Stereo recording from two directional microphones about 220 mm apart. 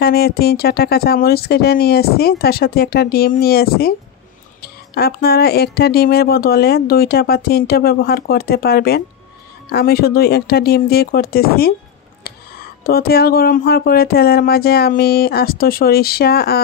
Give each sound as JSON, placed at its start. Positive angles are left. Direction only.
{"t": 0.0, "sound": "speech", "side_deg": 45}
{"t": 12.8, "sound": "speech", "side_deg": 45}